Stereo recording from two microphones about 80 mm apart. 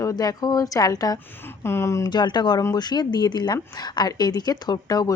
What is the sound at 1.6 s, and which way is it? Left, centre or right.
Speech, left.